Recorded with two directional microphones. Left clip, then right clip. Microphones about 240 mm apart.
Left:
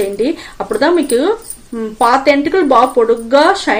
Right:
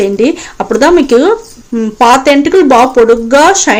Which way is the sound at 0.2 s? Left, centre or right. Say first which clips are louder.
Right 6 dB; right.